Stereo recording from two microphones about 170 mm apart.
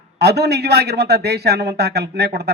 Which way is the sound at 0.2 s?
75° right (ahead or behind).